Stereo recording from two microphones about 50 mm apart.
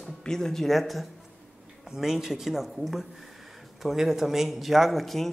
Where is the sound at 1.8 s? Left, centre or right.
Centre.